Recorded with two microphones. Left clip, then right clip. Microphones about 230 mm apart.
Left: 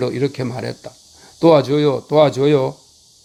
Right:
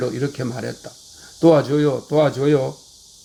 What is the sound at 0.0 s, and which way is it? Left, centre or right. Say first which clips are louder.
Speech: left 3 dB; left.